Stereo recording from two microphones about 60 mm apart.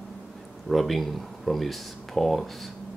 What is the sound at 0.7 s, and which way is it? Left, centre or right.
Speech, centre.